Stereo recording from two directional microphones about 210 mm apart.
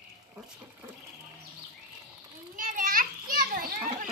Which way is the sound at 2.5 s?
40° right (ahead or behind).